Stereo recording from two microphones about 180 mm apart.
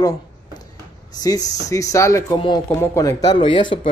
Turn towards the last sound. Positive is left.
turn(degrees=25)  # may be behind; listen again after turning